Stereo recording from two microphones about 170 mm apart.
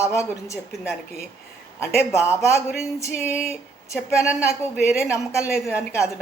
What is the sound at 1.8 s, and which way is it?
Speech, 15° left (ahead or behind).